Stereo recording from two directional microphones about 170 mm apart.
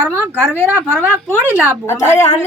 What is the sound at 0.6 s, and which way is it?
Speech, 10° right (ahead or behind).